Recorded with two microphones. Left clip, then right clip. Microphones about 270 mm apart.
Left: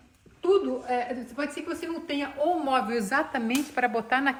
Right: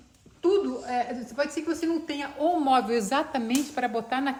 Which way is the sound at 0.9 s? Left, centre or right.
Right.